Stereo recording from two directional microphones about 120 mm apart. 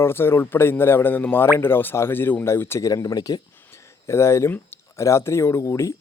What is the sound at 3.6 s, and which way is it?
A man's voice, 20° left (ahead or behind).